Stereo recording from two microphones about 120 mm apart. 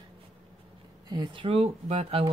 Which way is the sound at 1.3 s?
55° right (ahead or behind).